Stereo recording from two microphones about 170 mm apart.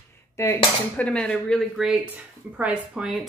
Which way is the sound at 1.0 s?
5° left (ahead or behind).